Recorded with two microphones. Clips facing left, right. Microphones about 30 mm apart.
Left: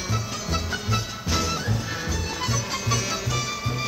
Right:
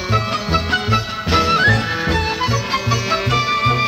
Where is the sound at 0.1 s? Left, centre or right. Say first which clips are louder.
Right 12 dB; right.